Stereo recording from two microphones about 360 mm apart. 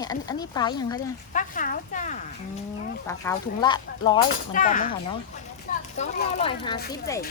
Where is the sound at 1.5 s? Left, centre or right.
Left.